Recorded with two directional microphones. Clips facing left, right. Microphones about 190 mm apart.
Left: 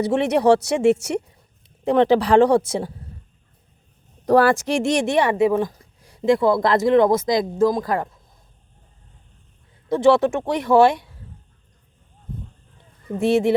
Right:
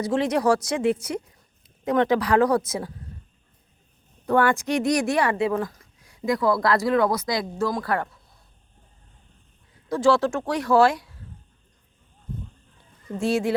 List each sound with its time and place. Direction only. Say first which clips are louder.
0.1 s a woman's voice: left 4 dB; 25° left (ahead or behind)
1.8 s a woman's voice: left 5 dB; 30° left (ahead or behind)
4.3 s a woman's voice: left 5 dB; 35° left (ahead or behind)
5.8 s speech: left 7 dB; 30° left (ahead or behind)
9.9 s a woman's voice: left 4 dB; 20° left (ahead or behind)
13.1 s a woman's voice: left 5 dB; 20° left (ahead or behind)